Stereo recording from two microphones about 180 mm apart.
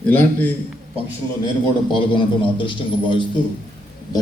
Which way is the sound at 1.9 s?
25° left (ahead or behind).